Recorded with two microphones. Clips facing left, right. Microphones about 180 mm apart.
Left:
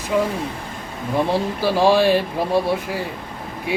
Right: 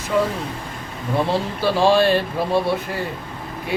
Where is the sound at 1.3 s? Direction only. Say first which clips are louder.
Left 1 dB; 10° left (ahead or behind).